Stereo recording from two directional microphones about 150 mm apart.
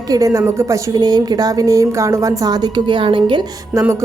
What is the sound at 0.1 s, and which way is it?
A woman's voice, 20° right (ahead or behind).